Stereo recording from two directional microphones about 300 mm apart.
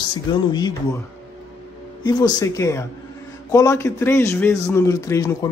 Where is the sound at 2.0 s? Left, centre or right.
Centre.